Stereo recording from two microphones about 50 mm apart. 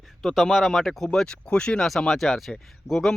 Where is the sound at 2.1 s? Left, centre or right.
Centre.